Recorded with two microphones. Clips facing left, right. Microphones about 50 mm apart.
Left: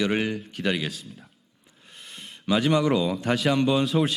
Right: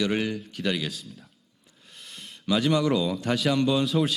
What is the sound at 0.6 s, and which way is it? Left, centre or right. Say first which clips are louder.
Speech: left 2 dB; left.